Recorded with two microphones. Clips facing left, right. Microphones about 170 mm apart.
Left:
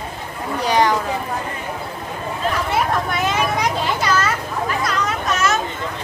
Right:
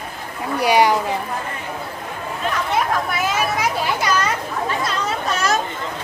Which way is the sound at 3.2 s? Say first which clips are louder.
Left 1 dB; 10° right (ahead or behind).